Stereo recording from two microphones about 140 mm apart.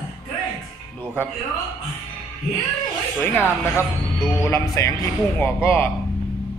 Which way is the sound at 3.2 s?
15° left (ahead or behind).